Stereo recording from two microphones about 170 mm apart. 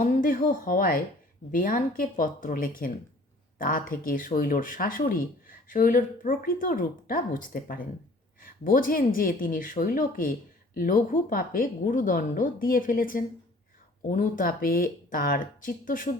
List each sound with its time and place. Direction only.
0.0 s a woman's voice: 50° left (ahead or behind)